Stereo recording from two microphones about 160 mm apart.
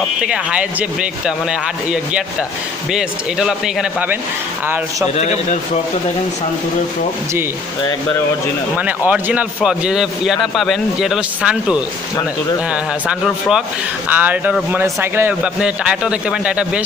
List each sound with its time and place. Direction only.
0.2 s a man's voice: 5° right (ahead or behind)
5.1 s a man's voice: 45° left (ahead or behind)
8.7 s a man's voice: 10° right (ahead or behind)
13.5 s speech: 5° right (ahead or behind)